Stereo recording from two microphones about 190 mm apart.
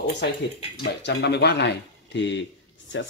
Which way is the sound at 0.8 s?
70° left (ahead or behind).